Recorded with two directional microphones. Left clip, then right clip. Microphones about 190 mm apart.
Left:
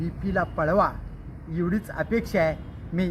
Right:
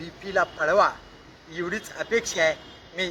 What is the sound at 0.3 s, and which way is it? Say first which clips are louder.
Speech: right 2 dB; 10° right (ahead or behind).